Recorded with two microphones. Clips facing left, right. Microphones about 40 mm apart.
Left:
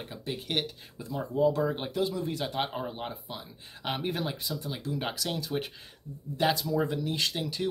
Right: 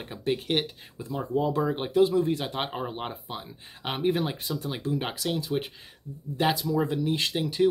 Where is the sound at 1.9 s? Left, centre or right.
Right.